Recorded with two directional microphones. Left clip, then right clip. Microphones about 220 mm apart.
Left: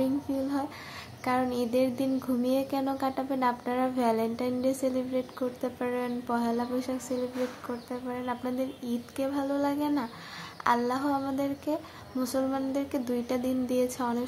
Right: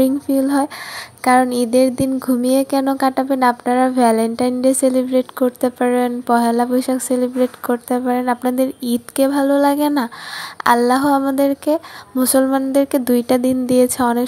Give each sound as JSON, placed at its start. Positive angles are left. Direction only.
{"t": 0.0, "sound": "speech", "side_deg": -35}